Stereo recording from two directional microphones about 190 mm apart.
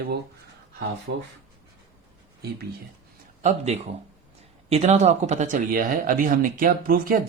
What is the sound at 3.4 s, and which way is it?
Speech, 35° right (ahead or behind).